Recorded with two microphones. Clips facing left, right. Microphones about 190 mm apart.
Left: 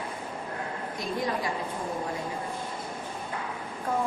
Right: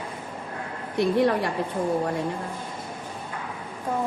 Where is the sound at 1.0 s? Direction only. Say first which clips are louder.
Right 10 dB; 65° right (ahead or behind).